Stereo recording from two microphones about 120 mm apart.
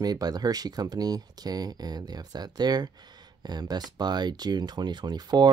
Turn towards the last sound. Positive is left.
turn(degrees=-35)  # may be behind; listen again after turning